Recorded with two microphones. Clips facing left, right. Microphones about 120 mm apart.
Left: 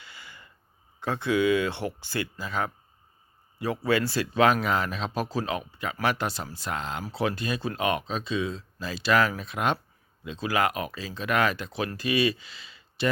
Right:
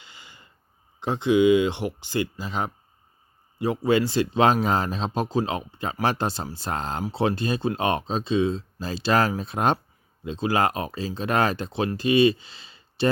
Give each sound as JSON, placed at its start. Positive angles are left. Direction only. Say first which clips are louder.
{"t": 0.0, "sound": "snort", "louder": "left 2 dB", "side_deg": -20}
{"t": 0.9, "sound": "speech", "louder": "right 5 dB", "side_deg": -20}
{"t": 3.8, "sound": "speech", "louder": "right 4 dB", "side_deg": -20}